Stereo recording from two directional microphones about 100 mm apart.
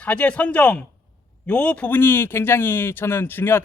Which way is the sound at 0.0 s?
15° left (ahead or behind).